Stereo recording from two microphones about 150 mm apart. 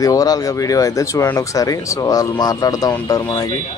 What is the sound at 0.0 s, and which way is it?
A man's voice, 25° left (ahead or behind).